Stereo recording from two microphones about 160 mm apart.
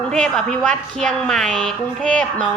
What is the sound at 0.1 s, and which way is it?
A woman's voice, 5° left (ahead or behind).